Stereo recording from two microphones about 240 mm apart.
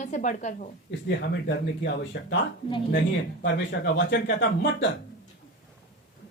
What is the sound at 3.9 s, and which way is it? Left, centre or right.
Speech, left.